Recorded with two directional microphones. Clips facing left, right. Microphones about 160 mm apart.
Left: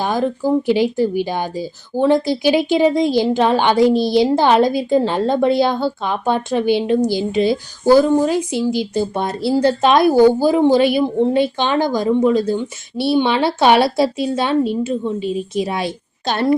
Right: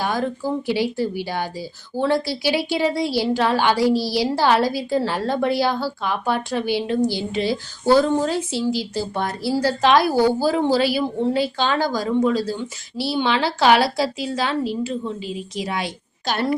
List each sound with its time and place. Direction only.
0.0 s a woman's voice: 20° left (ahead or behind)